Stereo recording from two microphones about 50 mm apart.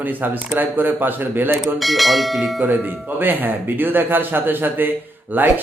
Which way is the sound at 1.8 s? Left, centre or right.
Centre.